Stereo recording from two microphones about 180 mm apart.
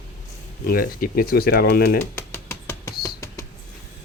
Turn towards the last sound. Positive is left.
turn(degrees=15)  # may be behind; listen again after turning